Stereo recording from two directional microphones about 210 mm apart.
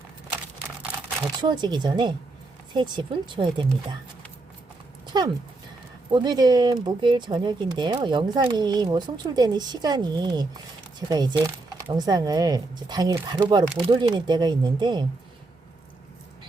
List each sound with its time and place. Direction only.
1.4 s speech: 20° right (ahead or behind)
5.0 s speech: 20° right (ahead or behind)